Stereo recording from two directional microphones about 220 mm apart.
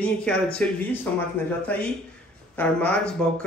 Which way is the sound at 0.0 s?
5° left (ahead or behind).